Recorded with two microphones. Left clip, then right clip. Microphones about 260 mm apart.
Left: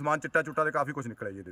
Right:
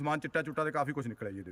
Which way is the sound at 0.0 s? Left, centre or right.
Centre.